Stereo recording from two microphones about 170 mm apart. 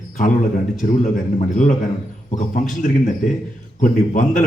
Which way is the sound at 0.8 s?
50° left (ahead or behind).